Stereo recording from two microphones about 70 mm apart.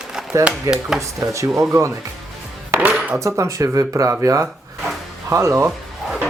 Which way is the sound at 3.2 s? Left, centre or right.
Right.